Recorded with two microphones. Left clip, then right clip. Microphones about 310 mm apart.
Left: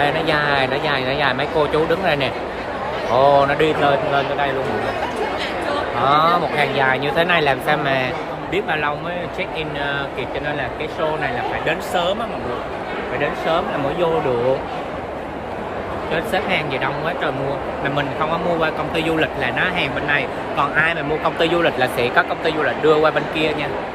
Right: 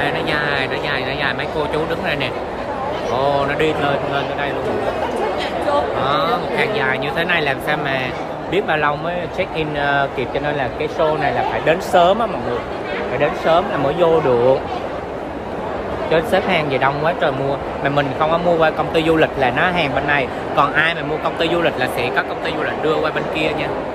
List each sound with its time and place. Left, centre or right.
0.0 s speech: centre
6.0 s speech: centre
11.6 s speech: centre
13.2 s speech: centre
16.1 s speech: centre